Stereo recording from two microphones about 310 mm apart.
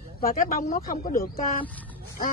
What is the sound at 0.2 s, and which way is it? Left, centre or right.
A woman's voice, left.